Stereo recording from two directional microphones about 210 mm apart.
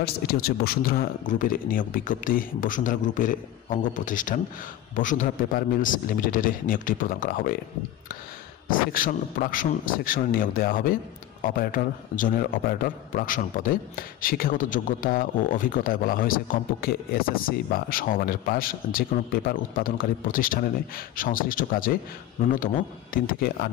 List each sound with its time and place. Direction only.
0.0 s speech: 50° left (ahead or behind)
8.9 s a man's voice: 40° left (ahead or behind)
23.1 s a man's voice: 45° left (ahead or behind)